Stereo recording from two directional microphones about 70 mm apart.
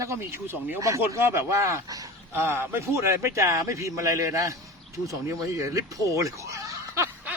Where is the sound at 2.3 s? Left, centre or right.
Right.